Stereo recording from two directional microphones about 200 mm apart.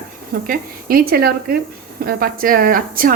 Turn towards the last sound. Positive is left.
turn(degrees=-45)  # may be behind; listen again after turning